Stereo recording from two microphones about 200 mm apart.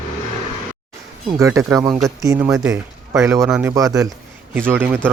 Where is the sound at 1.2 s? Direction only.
15° right (ahead or behind).